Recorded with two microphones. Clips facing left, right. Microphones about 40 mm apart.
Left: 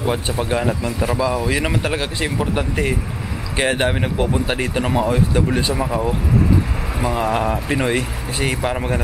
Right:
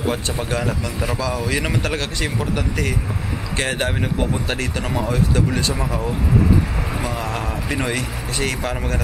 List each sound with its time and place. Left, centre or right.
0.0 s speech: centre
7.2 s speech: centre